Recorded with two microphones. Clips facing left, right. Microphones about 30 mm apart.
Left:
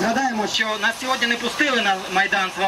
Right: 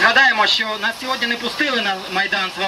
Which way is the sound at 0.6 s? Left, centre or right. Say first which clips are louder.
Even; right.